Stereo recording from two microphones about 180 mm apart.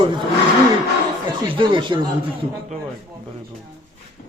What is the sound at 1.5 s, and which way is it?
Speech, 30° right (ahead or behind).